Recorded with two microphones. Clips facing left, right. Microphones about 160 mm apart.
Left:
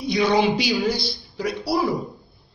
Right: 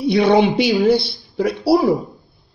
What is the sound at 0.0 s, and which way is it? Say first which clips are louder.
A woman's voice: right 6 dB; 60° right (ahead or behind).